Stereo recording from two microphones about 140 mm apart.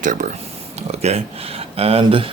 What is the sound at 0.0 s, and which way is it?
Speech, 65° right (ahead or behind).